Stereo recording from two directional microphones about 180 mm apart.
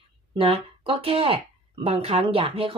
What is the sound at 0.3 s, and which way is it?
Speech, 30° right (ahead or behind).